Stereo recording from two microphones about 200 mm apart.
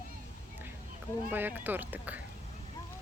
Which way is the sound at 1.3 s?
10° right (ahead or behind).